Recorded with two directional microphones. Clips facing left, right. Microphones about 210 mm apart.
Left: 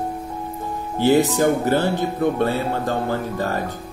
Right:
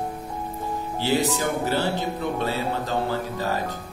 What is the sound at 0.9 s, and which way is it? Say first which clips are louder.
Speech: left 7 dB; 50° left (ahead or behind).